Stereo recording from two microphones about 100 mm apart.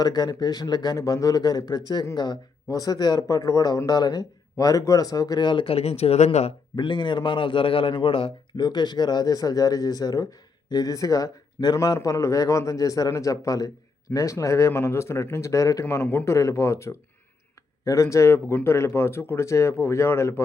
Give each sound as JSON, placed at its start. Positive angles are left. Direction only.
{"t": 0.0, "sound": "speech", "side_deg": 40}
{"t": 5.6, "sound": "speech", "side_deg": 85}
{"t": 6.7, "sound": "a man's voice", "side_deg": 50}
{"t": 8.6, "sound": "speech", "side_deg": 45}
{"t": 15.8, "sound": "speech", "side_deg": 20}